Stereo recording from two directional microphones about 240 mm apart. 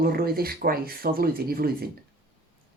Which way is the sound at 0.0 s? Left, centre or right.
Right.